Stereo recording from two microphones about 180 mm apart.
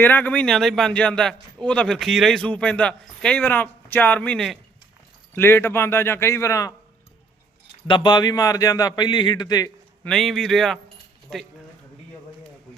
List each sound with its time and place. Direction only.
0.0 s a man's voice: 10° left (ahead or behind)
7.9 s a man's voice: 25° left (ahead or behind)
10.0 s a man's voice: centre (ahead or behind)